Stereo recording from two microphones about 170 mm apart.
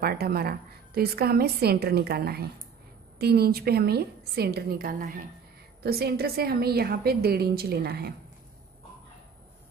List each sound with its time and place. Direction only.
0.0 s a woman's voice: 65° right (ahead or behind)